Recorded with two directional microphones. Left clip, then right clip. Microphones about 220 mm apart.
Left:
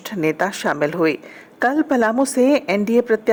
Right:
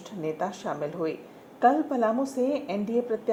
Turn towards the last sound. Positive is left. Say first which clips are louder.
# left 11 dB
turn(degrees=30)  # may be behind; listen again after turning